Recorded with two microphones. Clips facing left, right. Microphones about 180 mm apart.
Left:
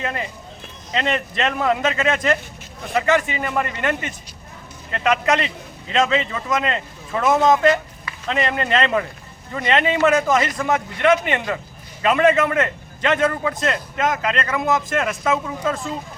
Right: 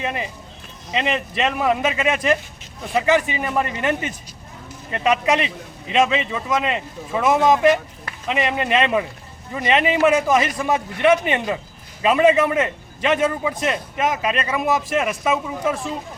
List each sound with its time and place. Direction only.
0.0 s a man's voice: 15° right (ahead or behind)